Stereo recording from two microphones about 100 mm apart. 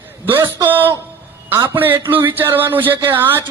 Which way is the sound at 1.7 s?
20° right (ahead or behind).